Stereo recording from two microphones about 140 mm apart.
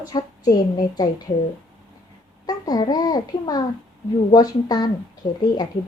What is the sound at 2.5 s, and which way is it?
A woman's voice, 25° left (ahead or behind).